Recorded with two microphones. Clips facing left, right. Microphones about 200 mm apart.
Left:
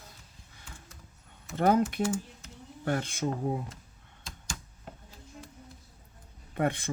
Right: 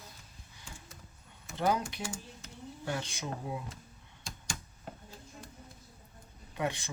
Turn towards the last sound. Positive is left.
turn(degrees=50)  # may be behind; listen again after turning